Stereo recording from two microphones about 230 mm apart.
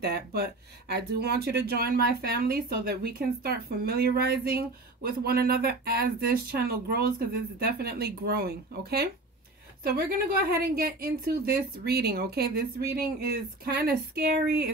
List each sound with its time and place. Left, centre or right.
0.0 s speech: right